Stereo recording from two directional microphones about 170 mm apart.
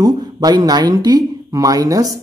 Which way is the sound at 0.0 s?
25° right (ahead or behind).